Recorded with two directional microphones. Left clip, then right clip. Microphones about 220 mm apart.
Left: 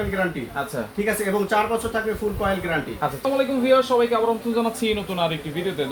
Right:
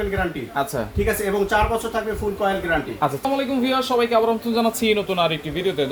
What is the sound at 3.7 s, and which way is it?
A man's voice, 55° right (ahead or behind).